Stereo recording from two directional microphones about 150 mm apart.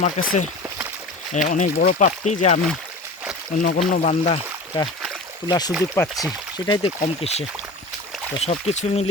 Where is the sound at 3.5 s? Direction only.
65° left (ahead or behind).